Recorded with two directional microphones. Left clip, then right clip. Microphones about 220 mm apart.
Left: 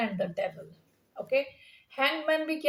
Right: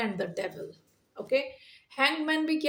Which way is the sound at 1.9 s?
45° right (ahead or behind).